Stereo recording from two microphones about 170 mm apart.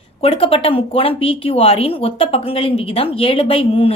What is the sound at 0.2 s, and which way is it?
Speech, 35° left (ahead or behind).